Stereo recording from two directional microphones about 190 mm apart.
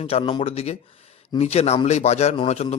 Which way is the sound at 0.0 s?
30° left (ahead or behind).